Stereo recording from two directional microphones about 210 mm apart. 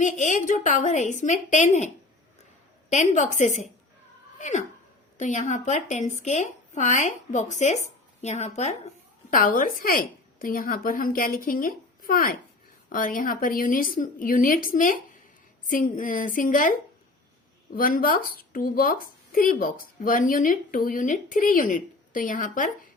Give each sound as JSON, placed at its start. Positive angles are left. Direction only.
{"t": 0.0, "sound": "a woman's voice", "side_deg": 35}
{"t": 2.9, "sound": "a woman's voice", "side_deg": 35}
{"t": 4.4, "sound": "a sound", "side_deg": 35}
{"t": 5.1, "sound": "a woman's voice", "side_deg": 35}
{"t": 9.3, "sound": "a woman's voice", "side_deg": 40}
{"t": 17.7, "sound": "a woman's voice", "side_deg": 40}